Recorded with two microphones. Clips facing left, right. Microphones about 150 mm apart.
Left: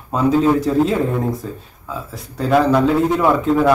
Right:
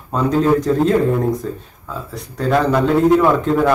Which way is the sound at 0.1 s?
5° left (ahead or behind).